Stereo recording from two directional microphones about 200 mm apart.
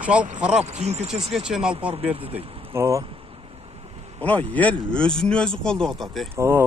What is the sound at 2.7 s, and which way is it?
Speech, 15° right (ahead or behind).